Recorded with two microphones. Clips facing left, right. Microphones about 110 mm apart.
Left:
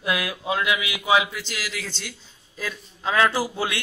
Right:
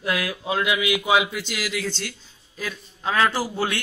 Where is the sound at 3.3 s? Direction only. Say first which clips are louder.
Even; 10° left (ahead or behind).